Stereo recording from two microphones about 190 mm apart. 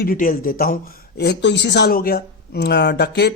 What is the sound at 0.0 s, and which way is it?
Speech, 50° left (ahead or behind).